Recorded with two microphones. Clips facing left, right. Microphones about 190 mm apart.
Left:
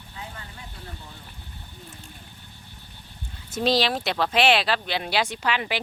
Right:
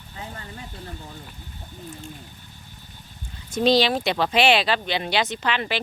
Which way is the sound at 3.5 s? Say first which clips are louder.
Right 4 dB; centre (ahead or behind).